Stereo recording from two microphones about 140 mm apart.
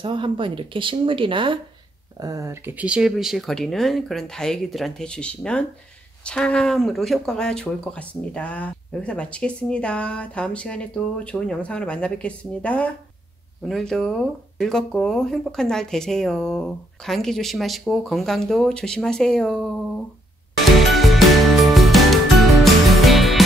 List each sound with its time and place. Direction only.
0.0 s speech: 35° right (ahead or behind)
2.1 s speech: 25° right (ahead or behind); by 19.7 s 5° left (ahead or behind)
20.8 s music: centre (ahead or behind)